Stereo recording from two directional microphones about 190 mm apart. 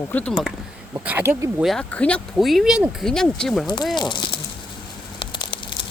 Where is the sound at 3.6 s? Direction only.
20° left (ahead or behind).